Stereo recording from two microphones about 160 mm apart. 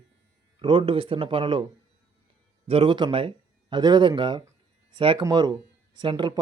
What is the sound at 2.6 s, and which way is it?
Speech, 35° right (ahead or behind).